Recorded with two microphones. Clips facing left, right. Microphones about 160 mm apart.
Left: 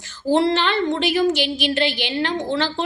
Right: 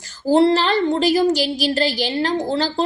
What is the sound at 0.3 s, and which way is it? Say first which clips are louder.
A woman's voice: right 4 dB; 35° right (ahead or behind).